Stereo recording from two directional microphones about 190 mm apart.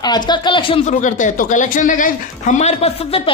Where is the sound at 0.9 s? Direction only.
40° left (ahead or behind).